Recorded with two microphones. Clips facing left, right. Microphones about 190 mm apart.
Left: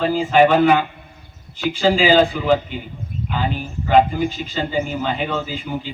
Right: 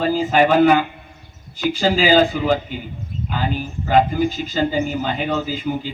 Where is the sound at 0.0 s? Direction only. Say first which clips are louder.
Left 2 dB; 40° right (ahead or behind).